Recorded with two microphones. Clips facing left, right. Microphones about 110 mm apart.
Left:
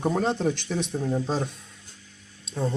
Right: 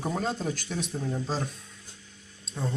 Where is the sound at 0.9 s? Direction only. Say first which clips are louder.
Left 6 dB; 15° left (ahead or behind).